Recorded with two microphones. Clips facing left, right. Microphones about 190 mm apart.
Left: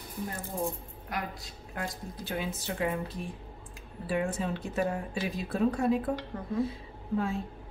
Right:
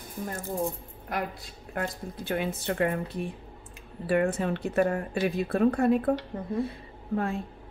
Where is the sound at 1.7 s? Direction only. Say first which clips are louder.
Right 5 dB; 55° right (ahead or behind).